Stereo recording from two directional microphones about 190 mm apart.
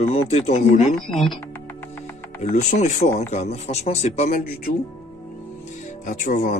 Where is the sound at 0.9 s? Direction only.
Centre (ahead or behind).